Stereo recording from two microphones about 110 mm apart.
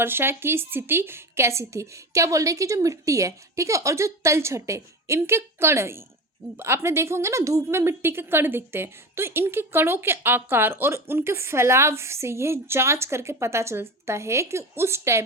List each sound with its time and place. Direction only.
0.0 s a woman's voice: 20° right (ahead or behind)